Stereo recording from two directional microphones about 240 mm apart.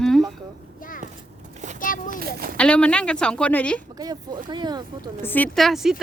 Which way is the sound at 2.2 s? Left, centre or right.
Right.